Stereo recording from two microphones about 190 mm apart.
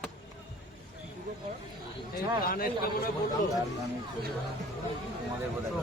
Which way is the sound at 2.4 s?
50° left (ahead or behind).